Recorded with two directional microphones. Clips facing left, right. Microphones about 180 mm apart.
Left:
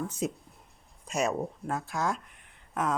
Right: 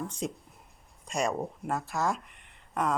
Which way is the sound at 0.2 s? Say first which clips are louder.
Left 2 dB; 5° left (ahead or behind).